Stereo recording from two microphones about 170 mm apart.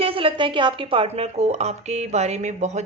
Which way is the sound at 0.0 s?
30° right (ahead or behind).